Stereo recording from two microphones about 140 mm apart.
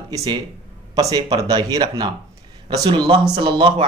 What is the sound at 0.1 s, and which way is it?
Speech, 25° right (ahead or behind).